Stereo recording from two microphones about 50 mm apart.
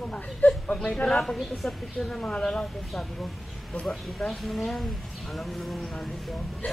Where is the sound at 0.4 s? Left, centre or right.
Left.